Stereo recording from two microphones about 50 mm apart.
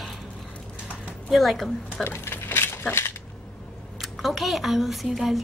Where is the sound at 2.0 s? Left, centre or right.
Left.